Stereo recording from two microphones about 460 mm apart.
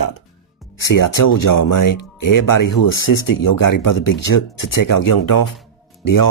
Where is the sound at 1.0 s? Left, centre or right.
Left.